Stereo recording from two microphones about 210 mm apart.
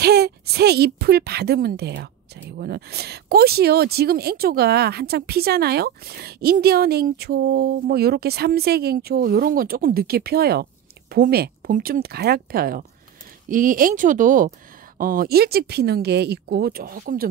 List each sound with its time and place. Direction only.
0.0 s speech: 50° right (ahead or behind)